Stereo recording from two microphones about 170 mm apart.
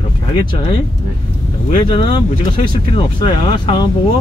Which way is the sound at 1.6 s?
30° left (ahead or behind).